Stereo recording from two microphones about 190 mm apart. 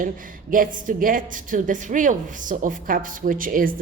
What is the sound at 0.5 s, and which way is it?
A woman's voice, 45° right (ahead or behind).